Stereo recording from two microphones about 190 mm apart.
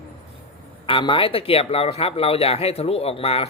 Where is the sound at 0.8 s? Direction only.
25° left (ahead or behind).